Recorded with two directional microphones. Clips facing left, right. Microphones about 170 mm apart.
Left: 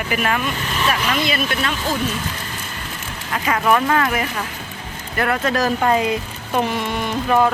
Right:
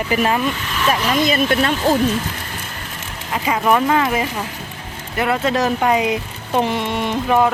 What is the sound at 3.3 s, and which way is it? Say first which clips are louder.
Speech: right 1 dB; 20° right (ahead or behind).